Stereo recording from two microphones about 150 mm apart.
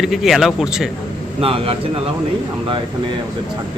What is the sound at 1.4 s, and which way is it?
Speech, 40° right (ahead or behind).